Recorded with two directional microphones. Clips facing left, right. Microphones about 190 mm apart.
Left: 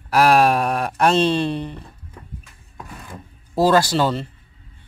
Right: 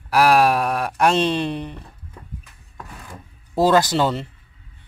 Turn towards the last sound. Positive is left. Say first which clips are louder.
# even
turn(degrees=-20)  # may be behind; listen again after turning